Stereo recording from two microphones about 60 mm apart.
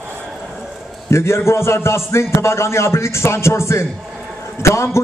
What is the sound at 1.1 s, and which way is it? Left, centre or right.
A man's voice, left.